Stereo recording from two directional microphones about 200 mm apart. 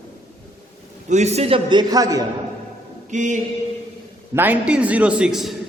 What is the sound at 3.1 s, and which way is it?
Mantra, 35° right (ahead or behind).